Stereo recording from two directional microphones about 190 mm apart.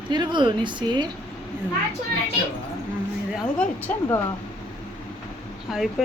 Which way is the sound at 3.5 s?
10° left (ahead or behind).